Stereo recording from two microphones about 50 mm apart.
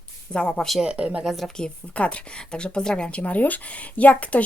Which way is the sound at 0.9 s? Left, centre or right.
Right.